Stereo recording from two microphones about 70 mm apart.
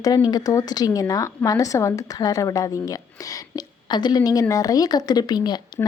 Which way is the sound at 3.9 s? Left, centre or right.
Left.